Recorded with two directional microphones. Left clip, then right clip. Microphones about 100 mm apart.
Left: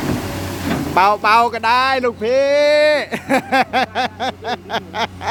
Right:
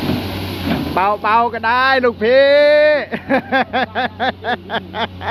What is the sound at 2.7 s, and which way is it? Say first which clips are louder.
Speech: right 2 dB; 45° left (ahead or behind).